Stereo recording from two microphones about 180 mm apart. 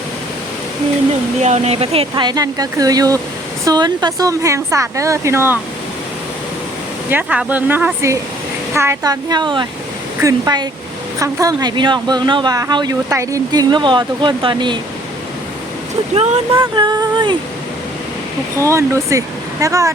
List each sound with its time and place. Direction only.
1.4 s speech: 40° right (ahead or behind); by 5.5 s 15° right (ahead or behind)
7.1 s speech: 10° right (ahead or behind); by 14.8 s 25° right (ahead or behind)
16.1 s speech: 40° right (ahead or behind)
16.7 s speech: 25° right (ahead or behind)
18.5 s speech: 15° right (ahead or behind)